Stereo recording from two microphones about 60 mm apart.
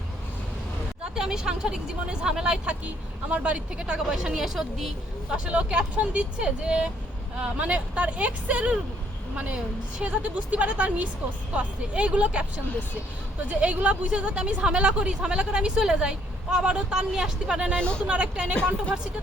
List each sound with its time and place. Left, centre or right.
1.1 s speech: centre
5.3 s a woman's voice: centre
13.5 s speech: right
17.7 s speech: centre
18.0 s speech: centre